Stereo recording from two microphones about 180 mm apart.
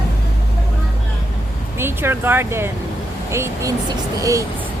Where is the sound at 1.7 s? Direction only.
15° right (ahead or behind).